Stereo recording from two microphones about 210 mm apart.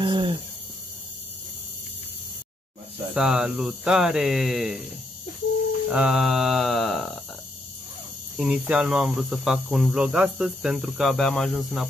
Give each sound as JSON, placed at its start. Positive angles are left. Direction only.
{"t": 0.0, "sound": "cricket", "side_deg": -20}
{"t": 3.2, "sound": "cricket", "side_deg": -5}
{"t": 5.9, "sound": "cricket", "side_deg": -5}
{"t": 8.4, "sound": "cricket", "side_deg": -5}